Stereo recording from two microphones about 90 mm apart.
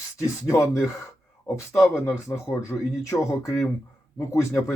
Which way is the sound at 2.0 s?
30° left (ahead or behind).